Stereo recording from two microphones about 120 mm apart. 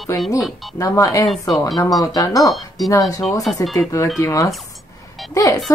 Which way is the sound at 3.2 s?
Centre (ahead or behind).